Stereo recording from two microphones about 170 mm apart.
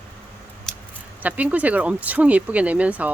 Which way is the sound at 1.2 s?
10° right (ahead or behind).